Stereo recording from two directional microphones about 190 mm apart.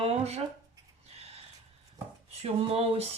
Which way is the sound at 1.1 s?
35° right (ahead or behind).